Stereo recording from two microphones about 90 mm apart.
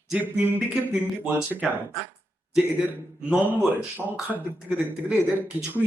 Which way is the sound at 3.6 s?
25° left (ahead or behind).